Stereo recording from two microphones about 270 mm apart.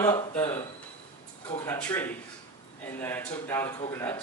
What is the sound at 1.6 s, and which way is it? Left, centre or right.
Speech, centre.